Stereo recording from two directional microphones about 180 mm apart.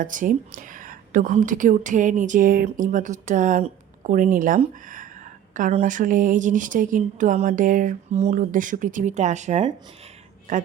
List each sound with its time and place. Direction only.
0.0 s a woman's voice: 45° right (ahead or behind)